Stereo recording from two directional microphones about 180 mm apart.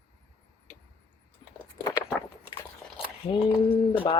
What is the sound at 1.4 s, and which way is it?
Keys jangling, 25° left (ahead or behind).